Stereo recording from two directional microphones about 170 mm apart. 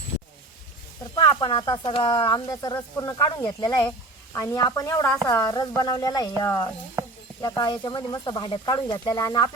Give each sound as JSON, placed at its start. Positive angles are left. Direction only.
{"t": 1.1, "sound": "speech", "side_deg": 30}